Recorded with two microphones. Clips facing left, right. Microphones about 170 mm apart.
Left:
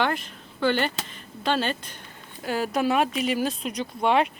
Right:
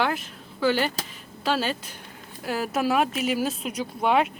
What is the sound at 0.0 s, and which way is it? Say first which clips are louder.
Speech: even; 5° right (ahead or behind).